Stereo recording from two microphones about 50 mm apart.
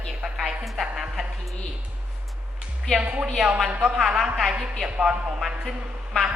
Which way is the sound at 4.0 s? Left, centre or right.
Centre.